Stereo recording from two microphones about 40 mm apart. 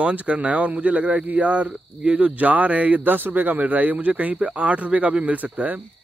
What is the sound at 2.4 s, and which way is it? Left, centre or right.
A man's voice, right.